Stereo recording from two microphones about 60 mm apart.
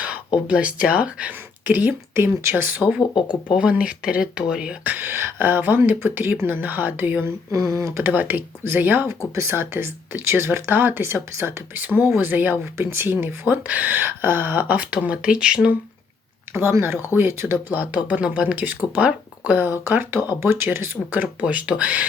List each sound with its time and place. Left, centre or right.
0.0 s speech: right
1.6 s speech: right
2.1 s speech: right
3.5 s speech: centre
4.8 s speech: right
7.5 s speech: right
8.0 s speech: right
9.0 s speech: right
11.8 s speech: right
17.2 s speech: right
17.7 s speech: right
19.8 s speech: right
21.5 s speech: right